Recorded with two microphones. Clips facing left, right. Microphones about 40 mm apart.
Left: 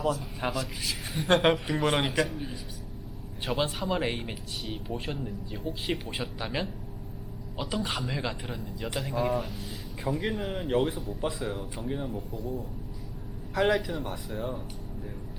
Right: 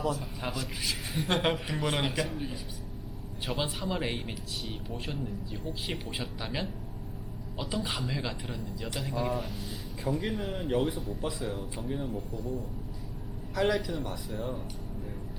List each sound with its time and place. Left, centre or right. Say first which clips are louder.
0.5 s speech: left 2 dB; centre
1.3 s speech: left 6 dB; centre
1.5 s speech: left 4 dB; centre
3.4 s speech: left 4 dB; centre
7.8 s speech: left 2 dB; centre
12.3 s speech: left 1 dB; left
13.5 s a man's voice: left 3 dB; left
14.3 s speech: left 2 dB; centre